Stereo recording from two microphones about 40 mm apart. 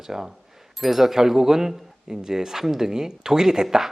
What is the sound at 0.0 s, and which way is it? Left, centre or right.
Speech, centre.